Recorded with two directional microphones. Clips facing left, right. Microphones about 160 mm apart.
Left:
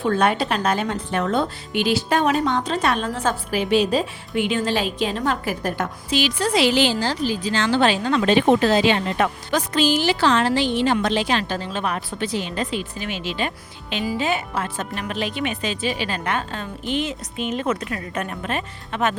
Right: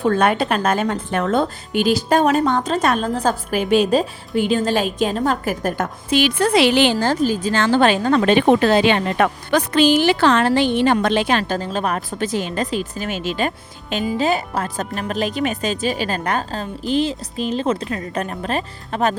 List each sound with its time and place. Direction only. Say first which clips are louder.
0.0 s a woman's voice: right 3 dB; 50° right (ahead or behind); by 19.1 s 35° right (ahead or behind)